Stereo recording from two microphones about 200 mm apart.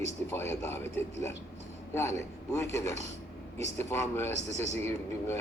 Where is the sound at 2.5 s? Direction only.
15° left (ahead or behind).